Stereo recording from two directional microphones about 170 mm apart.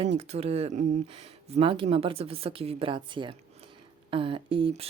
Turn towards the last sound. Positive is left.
turn(degrees=-35)  # may be behind; listen again after turning